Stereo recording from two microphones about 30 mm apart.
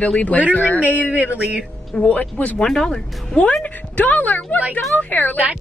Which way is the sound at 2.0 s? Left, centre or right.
Left.